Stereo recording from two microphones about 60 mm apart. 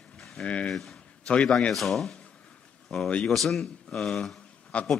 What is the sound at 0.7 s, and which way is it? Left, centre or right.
Speech, centre.